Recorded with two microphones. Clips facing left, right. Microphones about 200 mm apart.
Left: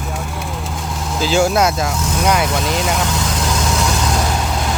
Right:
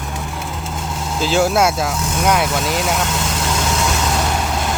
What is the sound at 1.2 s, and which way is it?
Speech, centre (ahead or behind).